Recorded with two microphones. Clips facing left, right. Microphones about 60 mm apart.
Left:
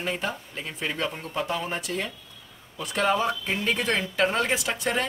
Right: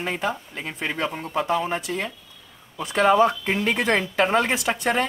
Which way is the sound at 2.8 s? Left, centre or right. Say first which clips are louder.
Right 7 dB; right.